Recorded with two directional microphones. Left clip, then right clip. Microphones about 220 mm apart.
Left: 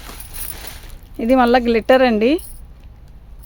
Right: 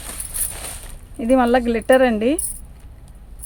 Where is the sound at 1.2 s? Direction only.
45° left (ahead or behind).